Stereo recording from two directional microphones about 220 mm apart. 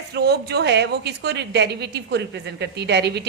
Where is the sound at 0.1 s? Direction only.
50° right (ahead or behind).